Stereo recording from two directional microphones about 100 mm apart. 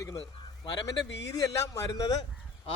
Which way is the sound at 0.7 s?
40° left (ahead or behind).